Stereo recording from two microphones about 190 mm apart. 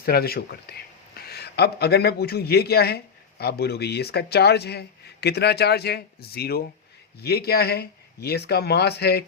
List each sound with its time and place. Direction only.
0.0 s speech: 55° left (ahead or behind)